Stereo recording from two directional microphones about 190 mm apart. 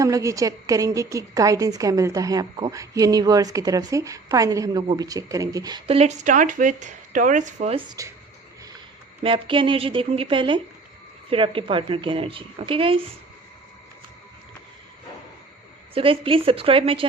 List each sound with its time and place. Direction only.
0.0 s a woman's voice: 15° right (ahead or behind); by 7.8 s 40° right (ahead or behind)
7.9 s speech: 15° right (ahead or behind)
9.2 s a woman's voice: 25° right (ahead or behind)
16.0 s a woman's voice: 30° right (ahead or behind)